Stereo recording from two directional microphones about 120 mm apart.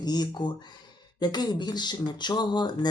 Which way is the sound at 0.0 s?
35° left (ahead or behind).